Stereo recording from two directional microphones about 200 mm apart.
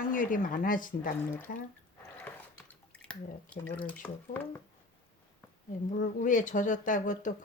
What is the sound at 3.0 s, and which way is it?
Speech, 5° left (ahead or behind).